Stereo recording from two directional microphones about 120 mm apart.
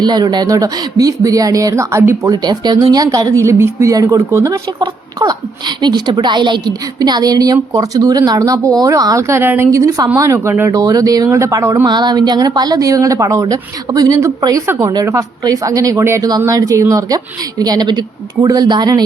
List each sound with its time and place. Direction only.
0.0 s speech: 35° right (ahead or behind)
4.8 s a woman's voice: 35° right (ahead or behind); by 10.7 s 20° right (ahead or behind)
10.7 s a woman's voice: 30° right (ahead or behind)
11.9 s a woman's voice: 35° right (ahead or behind)